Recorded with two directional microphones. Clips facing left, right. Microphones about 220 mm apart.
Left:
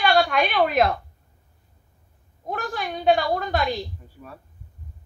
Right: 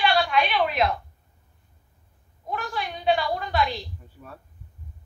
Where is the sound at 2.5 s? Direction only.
45° left (ahead or behind).